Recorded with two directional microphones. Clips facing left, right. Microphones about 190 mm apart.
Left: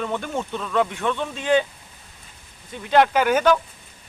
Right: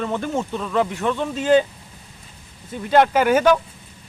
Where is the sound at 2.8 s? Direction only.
5° right (ahead or behind).